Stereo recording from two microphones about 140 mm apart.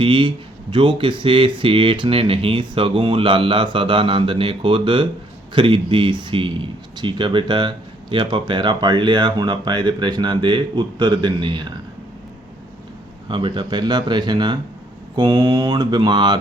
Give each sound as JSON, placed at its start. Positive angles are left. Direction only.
{"t": 0.0, "sound": "speech", "side_deg": -35}
{"t": 13.2, "sound": "speech", "side_deg": -35}